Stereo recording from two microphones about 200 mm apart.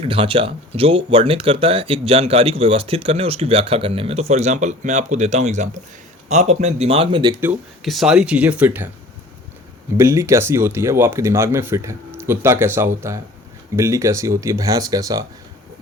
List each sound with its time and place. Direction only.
0.0 s speech: 25° right (ahead or behind)
7.9 s speech: centre (ahead or behind)
10.0 s speech: 15° right (ahead or behind)